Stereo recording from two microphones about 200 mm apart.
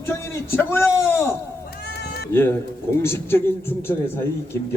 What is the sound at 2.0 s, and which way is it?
Cat, 55° left (ahead or behind).